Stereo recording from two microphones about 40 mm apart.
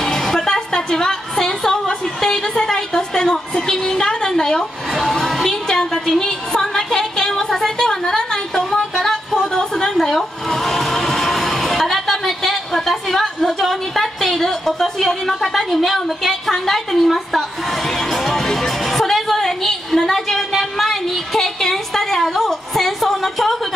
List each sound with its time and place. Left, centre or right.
0.0 s music: centre
5.1 s a sound: centre
9.9 s music: centre